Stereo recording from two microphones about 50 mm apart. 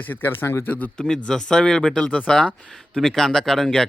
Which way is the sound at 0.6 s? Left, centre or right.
Left.